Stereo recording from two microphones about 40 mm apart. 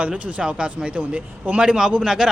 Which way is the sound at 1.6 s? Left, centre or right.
Centre.